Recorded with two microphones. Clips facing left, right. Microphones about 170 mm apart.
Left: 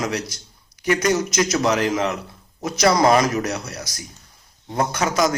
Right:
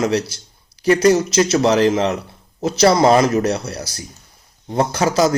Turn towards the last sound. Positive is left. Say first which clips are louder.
# right 4 dB
turn(degrees=-30)  # may be behind; listen again after turning